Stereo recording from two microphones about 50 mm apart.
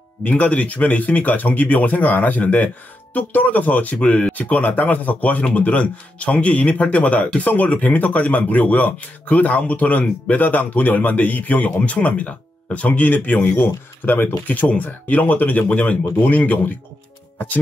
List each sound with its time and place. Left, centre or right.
0.2 s a man's voice: left